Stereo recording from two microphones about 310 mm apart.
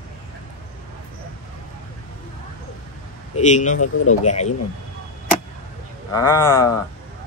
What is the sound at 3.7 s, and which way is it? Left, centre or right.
Speech, left.